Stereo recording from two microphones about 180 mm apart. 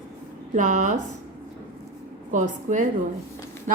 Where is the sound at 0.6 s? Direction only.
45° right (ahead or behind).